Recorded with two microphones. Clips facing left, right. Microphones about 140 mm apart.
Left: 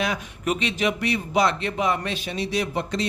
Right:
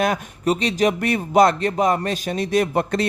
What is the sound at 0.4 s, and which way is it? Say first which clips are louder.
Speech: right 5 dB; 35° right (ahead or behind).